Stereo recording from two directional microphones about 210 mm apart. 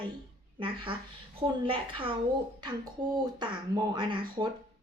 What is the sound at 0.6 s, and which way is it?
A woman's voice, 25° right (ahead or behind).